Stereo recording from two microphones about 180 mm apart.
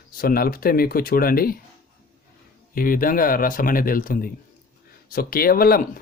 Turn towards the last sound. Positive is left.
turn(degrees=55)  # may be behind; listen again after turning